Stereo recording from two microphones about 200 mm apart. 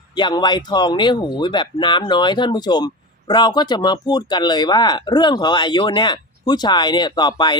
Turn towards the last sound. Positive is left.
turn(degrees=20)  # may be behind; listen again after turning